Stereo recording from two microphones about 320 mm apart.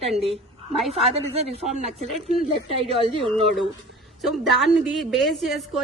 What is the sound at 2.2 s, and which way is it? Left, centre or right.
Speech, centre.